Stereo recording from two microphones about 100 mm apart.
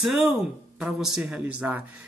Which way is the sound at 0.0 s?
5° right (ahead or behind).